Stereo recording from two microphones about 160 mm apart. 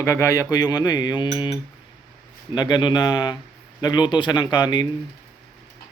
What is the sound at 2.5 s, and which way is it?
A man's voice, 30° left (ahead or behind).